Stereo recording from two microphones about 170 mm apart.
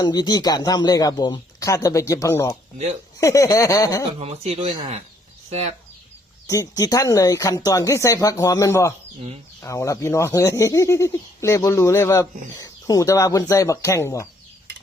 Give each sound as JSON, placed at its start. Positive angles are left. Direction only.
{"t": 0.0, "sound": "speech", "side_deg": 25}
{"t": 4.2, "sound": "speech", "side_deg": -35}
{"t": 6.5, "sound": "speech", "side_deg": 20}